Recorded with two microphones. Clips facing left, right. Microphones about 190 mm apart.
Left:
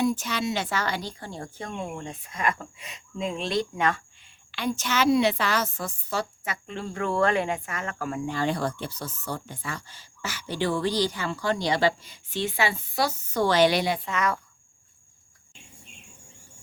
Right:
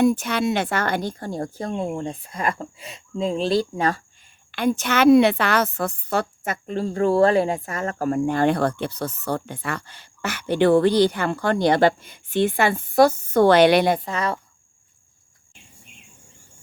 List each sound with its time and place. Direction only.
0.0 s speech: 55° right (ahead or behind); by 4.0 s 35° right (ahead or behind)
4.5 s a woman's voice: 55° right (ahead or behind)
14.1 s speech: 30° right (ahead or behind)